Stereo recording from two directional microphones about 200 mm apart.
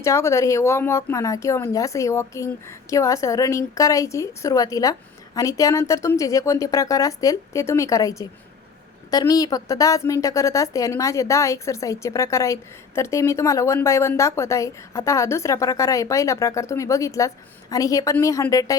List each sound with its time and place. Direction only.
0.0 s a woman's voice: 15° left (ahead or behind)